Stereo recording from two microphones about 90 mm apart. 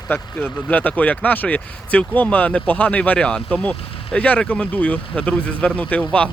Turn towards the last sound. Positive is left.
turn(degrees=10)  # may be behind; listen again after turning